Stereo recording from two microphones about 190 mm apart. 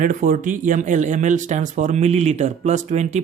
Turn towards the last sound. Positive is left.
turn(degrees=-35)  # may be behind; listen again after turning